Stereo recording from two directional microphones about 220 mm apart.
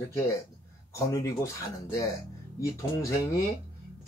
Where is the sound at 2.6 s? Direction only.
15° left (ahead or behind).